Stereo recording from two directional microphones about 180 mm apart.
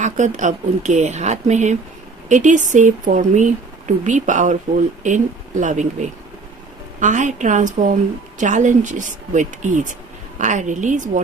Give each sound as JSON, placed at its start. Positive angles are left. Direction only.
{"t": 0.0, "sound": "speech", "side_deg": -40}